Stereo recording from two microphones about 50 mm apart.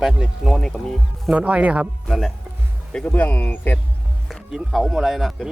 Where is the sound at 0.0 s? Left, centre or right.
Centre.